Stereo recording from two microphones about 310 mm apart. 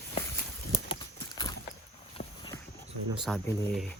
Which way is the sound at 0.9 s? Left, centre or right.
Centre.